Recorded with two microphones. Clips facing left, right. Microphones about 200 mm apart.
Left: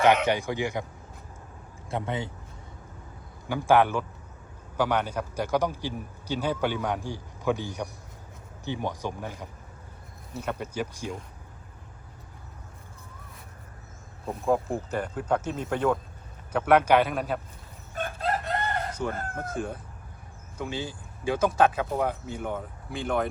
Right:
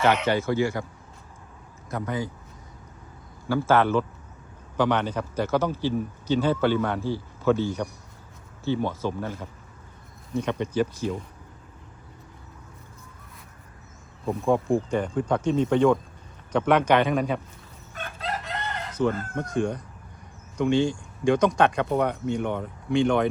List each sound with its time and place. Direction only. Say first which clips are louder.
0.3 s speech: right 4 dB; 15° left (ahead or behind)
1.9 s speech: right 2 dB; 25° left (ahead or behind)
3.5 s speech: right 1 dB; 15° left (ahead or behind)
14.8 s speech: right 3 dB; 5° left (ahead or behind)
17.9 s chicken: left 4 dB; 45° left (ahead or behind)
19.4 s speech: right 6 dB; 5° left (ahead or behind)